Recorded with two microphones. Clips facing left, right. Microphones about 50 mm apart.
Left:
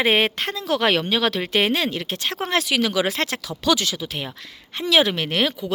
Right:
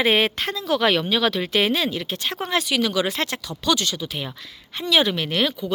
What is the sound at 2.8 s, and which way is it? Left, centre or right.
Speech, left.